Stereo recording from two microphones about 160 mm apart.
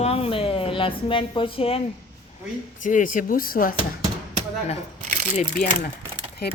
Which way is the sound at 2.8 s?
55° left (ahead or behind).